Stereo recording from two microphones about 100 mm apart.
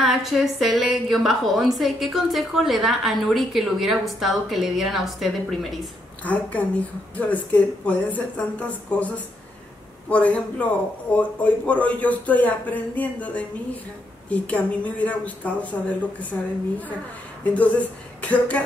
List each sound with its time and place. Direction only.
0.0 s a woman's voice: 5° right (ahead or behind)
6.2 s speech: 15° left (ahead or behind)
17.6 s speech: 15° left (ahead or behind)